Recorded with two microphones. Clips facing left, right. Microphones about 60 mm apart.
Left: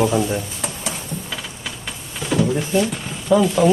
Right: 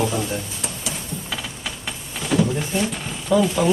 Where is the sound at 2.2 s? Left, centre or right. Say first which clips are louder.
Left 1 dB; centre.